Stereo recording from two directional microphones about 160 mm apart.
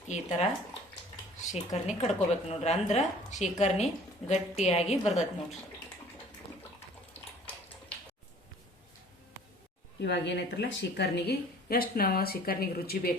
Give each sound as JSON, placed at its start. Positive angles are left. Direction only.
{"t": 0.1, "sound": "a woman's voice", "side_deg": 45}
{"t": 1.5, "sound": "a woman's voice", "side_deg": 45}
{"t": 10.0, "sound": "a woman's voice", "side_deg": 90}